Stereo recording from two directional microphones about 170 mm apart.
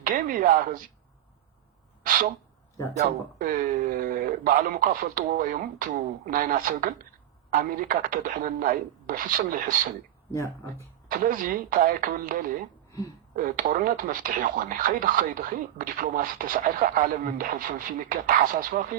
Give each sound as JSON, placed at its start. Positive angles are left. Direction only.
{"t": 0.0, "sound": "speech", "side_deg": -55}
{"t": 2.0, "sound": "a sound", "side_deg": -55}
{"t": 3.3, "sound": "a man's voice", "side_deg": -55}
{"t": 10.3, "sound": "speech", "side_deg": 15}
{"t": 11.1, "sound": "speech", "side_deg": -55}